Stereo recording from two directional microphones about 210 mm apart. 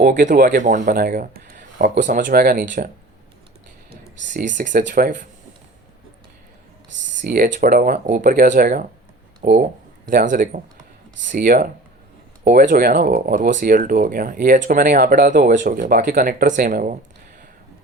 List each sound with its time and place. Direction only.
0.0 s speech: 40° right (ahead or behind)
4.4 s speech: 40° right (ahead or behind)
7.2 s speech: 40° right (ahead or behind)